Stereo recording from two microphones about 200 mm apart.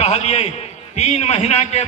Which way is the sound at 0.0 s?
30° left (ahead or behind).